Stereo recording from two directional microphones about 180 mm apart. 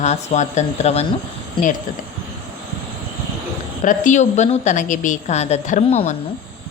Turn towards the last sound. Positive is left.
turn(degrees=40)  # may be behind; listen again after turning